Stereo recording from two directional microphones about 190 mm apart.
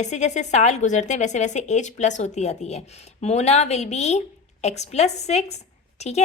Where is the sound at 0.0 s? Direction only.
40° left (ahead or behind).